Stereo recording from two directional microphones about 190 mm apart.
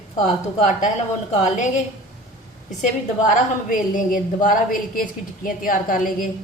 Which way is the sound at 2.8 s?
45° left (ahead or behind).